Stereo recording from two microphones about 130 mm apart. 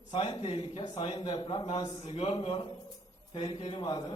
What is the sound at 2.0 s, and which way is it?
Speech, 50° left (ahead or behind).